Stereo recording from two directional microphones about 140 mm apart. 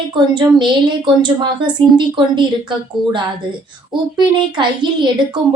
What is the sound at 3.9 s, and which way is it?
Speech, 35° right (ahead or behind).